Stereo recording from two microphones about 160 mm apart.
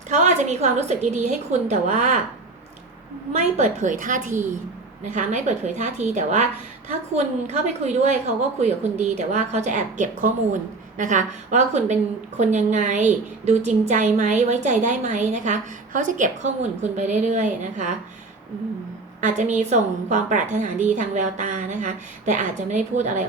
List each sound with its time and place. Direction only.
0.1 s a woman's voice: 45° right (ahead or behind)
3.3 s a woman's voice: 45° right (ahead or behind)
19.2 s a woman's voice: 50° right (ahead or behind)